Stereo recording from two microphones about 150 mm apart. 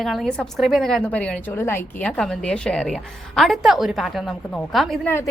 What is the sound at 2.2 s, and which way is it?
A woman's voice, 5° left (ahead or behind).